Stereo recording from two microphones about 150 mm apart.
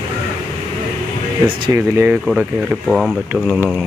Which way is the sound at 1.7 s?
15° right (ahead or behind).